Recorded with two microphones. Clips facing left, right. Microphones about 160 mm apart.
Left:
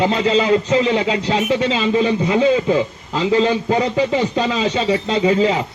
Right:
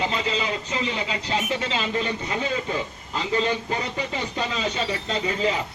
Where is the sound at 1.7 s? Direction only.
90° left.